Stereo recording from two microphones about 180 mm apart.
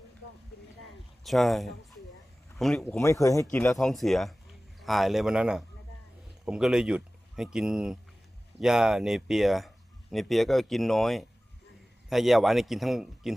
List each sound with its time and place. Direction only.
1.2 s speech: centre (ahead or behind)
3.0 s speech: 15° left (ahead or behind)
3.5 s speech: 5° left (ahead or behind)